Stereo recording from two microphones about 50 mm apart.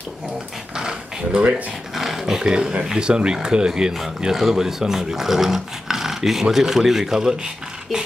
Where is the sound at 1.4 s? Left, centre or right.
Right.